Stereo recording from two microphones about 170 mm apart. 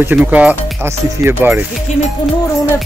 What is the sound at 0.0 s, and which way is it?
Speech, 10° right (ahead or behind).